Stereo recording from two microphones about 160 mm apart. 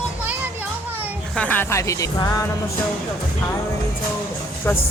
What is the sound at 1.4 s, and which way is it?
Speech, 10° left (ahead or behind).